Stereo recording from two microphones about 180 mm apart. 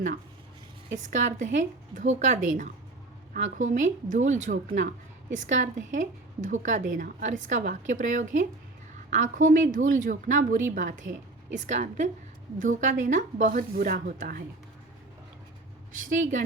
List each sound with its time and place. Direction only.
1.0 s a woman's voice: 45° right (ahead or behind)
16.0 s a woman's voice: 45° right (ahead or behind)